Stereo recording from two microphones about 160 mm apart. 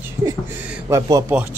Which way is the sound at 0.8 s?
20° right (ahead or behind).